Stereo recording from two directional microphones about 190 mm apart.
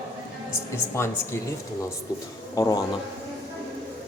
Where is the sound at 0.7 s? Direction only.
15° left (ahead or behind).